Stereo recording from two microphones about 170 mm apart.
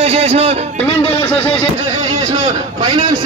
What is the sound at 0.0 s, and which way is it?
Speech, 35° right (ahead or behind).